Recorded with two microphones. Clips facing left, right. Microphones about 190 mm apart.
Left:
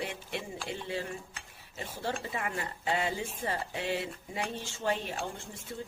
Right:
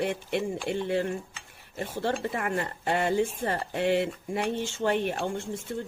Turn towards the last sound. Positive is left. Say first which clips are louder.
# right 9 dB
turn(degrees=-60)  # may be behind; listen again after turning